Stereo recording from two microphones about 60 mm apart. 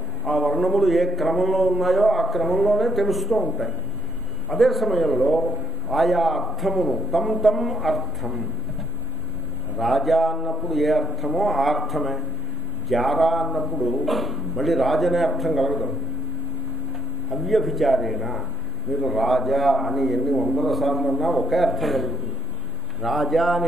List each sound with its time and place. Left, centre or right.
0.3 s a man's voice: centre
5.1 s a man's voice: centre
5.9 s a man's voice: centre
9.8 s a man's voice: centre
17.3 s a man's voice: centre